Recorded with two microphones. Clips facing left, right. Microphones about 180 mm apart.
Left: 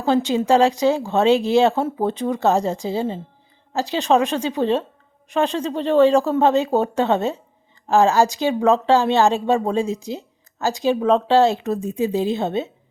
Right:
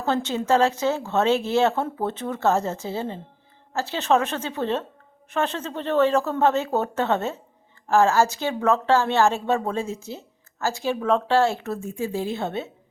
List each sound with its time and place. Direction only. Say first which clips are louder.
0.0 s speech: left 6 dB; 10° left (ahead or behind)